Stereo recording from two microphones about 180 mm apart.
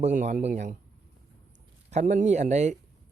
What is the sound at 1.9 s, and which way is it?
Speech, 40° right (ahead or behind).